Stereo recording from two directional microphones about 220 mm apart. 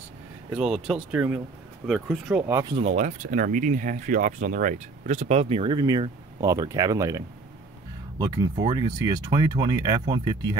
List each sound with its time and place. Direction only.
0.5 s speech: 5° right (ahead or behind); by 2.9 s 20° right (ahead or behind)
3.0 s speech: 35° right (ahead or behind); by 10.6 s 20° right (ahead or behind)